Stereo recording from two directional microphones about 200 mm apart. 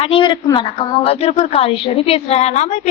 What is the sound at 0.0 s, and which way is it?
A woman's voice, 25° left (ahead or behind).